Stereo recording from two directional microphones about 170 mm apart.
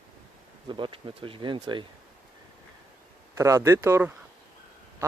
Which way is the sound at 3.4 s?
15° right (ahead or behind).